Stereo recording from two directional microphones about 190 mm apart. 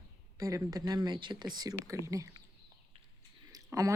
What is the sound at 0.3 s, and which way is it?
Speech, 15° right (ahead or behind).